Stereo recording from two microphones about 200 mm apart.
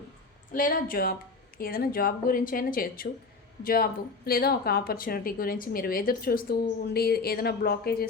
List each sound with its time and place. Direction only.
0.5 s a woman's voice: 45° left (ahead or behind)